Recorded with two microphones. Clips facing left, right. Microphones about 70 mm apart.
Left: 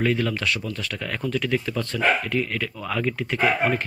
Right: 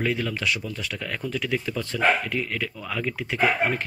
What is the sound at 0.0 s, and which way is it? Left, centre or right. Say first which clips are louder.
Speech: left 3 dB; centre.